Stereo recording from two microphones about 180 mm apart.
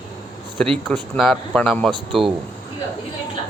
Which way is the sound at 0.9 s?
Centre (ahead or behind).